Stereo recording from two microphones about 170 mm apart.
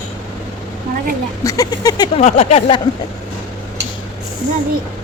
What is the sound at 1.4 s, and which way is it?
Speech, 20° left (ahead or behind).